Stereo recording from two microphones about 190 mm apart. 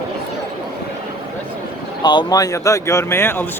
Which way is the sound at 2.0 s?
20° left (ahead or behind).